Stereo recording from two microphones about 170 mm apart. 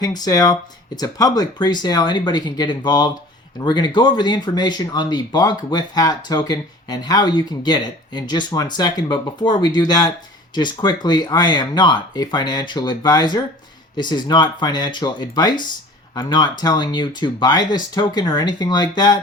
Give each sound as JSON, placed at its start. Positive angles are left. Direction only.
{"t": 0.0, "sound": "speech", "side_deg": 25}